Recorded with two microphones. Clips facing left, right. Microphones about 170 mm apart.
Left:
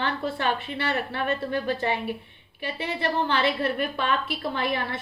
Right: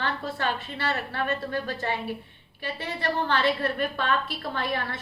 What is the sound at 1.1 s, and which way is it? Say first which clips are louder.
A woman's voice: left 2 dB; 15° left (ahead or behind).